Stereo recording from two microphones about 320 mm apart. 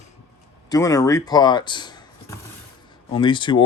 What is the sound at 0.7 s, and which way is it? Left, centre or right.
Speech, centre.